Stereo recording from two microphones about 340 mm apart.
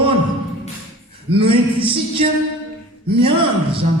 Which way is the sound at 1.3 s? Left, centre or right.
Centre.